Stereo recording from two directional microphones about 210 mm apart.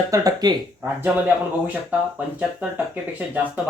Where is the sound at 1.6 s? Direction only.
5° right (ahead or behind).